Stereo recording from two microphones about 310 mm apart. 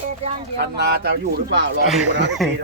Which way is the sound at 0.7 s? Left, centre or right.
Right.